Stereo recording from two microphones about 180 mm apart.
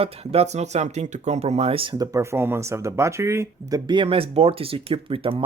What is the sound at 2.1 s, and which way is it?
Speech, 15° right (ahead or behind).